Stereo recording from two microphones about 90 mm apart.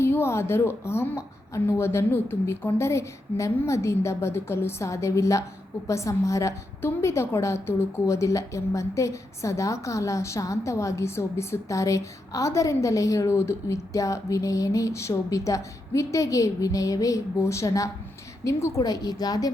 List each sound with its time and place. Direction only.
0.0 s a woman's voice: 25° left (ahead or behind)
18.8 s a woman's voice: 50° left (ahead or behind)